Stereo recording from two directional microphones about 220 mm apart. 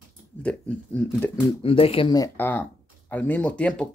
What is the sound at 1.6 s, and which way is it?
Speech, 25° left (ahead or behind).